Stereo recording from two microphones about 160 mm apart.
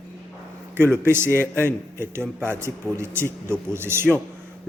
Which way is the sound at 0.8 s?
15° right (ahead or behind).